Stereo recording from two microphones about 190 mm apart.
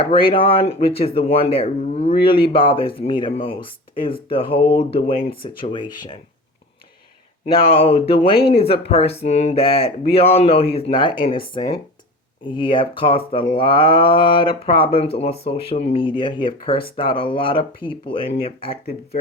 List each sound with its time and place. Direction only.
0.0 s speech: 30° left (ahead or behind)
7.4 s speech: 30° left (ahead or behind)